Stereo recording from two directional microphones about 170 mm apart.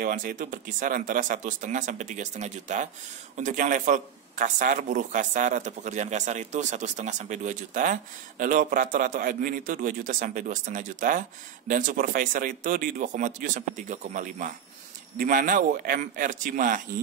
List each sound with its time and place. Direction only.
0.0 s a man's voice: 50° right (ahead or behind)